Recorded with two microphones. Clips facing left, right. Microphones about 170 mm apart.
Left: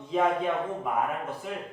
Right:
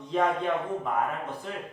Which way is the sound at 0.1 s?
5° left (ahead or behind).